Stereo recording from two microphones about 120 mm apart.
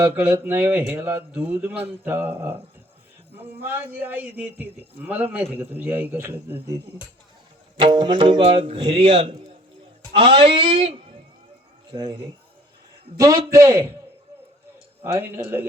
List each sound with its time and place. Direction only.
0.0 s a man's voice: 20° right (ahead or behind)
7.8 s speech: 40° right (ahead or behind)
8.4 s speech: 55° right (ahead or behind)
11.9 s a man's voice: 35° right (ahead or behind)
15.0 s a man's voice: 20° right (ahead or behind)